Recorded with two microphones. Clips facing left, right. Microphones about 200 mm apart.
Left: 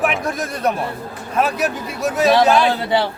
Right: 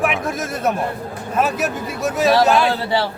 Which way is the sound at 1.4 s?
Centre (ahead or behind).